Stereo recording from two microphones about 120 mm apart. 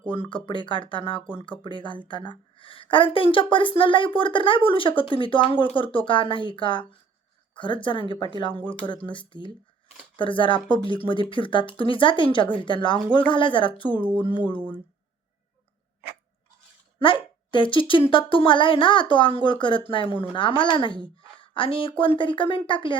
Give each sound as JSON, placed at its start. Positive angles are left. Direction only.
{"t": 0.1, "sound": "a woman's voice", "side_deg": 45}
{"t": 17.0, "sound": "a woman's voice", "side_deg": 45}